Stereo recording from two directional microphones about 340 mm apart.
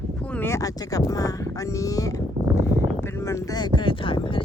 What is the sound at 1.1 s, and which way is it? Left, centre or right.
Speech, centre.